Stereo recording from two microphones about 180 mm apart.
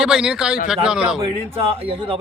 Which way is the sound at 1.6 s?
30° right (ahead or behind).